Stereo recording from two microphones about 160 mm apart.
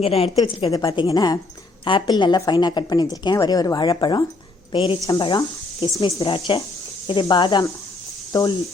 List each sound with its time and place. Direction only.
0.0 s a woman's voice: 40° left (ahead or behind)
0.3 s a woman's voice: 25° left (ahead or behind)
6.1 s a woman's voice: 35° left (ahead or behind)